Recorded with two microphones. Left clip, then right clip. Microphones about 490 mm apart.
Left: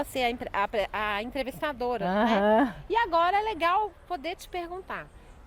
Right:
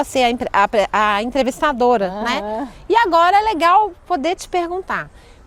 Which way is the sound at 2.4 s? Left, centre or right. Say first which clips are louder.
Left 2 dB; left.